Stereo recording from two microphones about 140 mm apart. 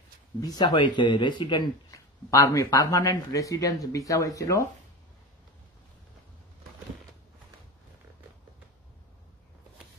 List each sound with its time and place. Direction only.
0.4 s speech: 30° left (ahead or behind)